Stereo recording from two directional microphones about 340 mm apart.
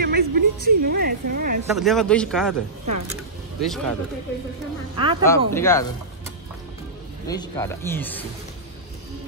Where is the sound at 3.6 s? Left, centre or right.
Centre.